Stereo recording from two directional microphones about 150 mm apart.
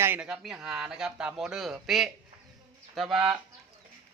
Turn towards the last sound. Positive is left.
turn(degrees=0)  # may be behind; listen again after turning